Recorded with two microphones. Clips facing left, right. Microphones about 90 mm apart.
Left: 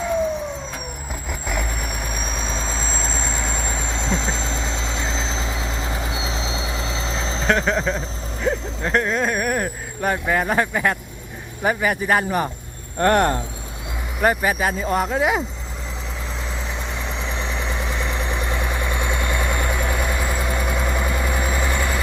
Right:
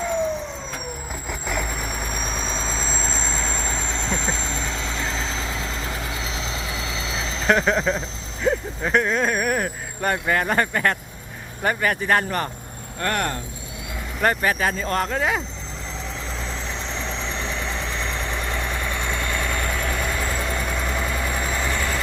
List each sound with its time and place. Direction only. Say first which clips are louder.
0.0 s vehicle: left 2 dB; centre (ahead or behind)
1.3 s vehicle: even; centre (ahead or behind); by 5.5 s 25° left (ahead or behind)
7.2 s vehicle: left 2 dB; 35° left (ahead or behind)
7.4 s speech: right 1 dB; centre (ahead or behind)
13.0 s speech: left 8 dB; 30° left (ahead or behind)
14.2 s speech: left 2 dB; 10° left (ahead or behind)
16.6 s vehicle: left 1 dB; 10° left (ahead or behind)